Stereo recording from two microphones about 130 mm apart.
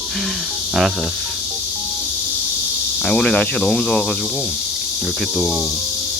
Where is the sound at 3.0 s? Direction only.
5° left (ahead or behind).